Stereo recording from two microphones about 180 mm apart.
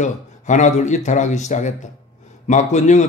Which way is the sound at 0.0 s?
40° left (ahead or behind).